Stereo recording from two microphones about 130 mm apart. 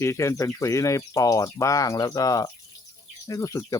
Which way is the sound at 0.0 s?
20° left (ahead or behind).